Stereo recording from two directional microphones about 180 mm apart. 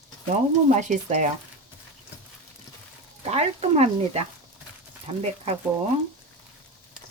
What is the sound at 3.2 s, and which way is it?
Speech, 35° right (ahead or behind).